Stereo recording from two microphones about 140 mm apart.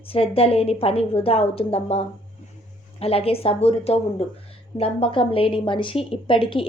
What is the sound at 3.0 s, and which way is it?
A woman's voice, 45° left (ahead or behind).